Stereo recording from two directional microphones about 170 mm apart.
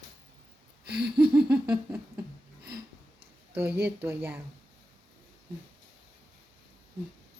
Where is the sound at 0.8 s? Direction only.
70° right (ahead or behind).